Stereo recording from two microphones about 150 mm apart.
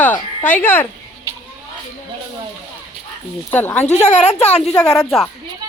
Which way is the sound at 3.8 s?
50° left (ahead or behind).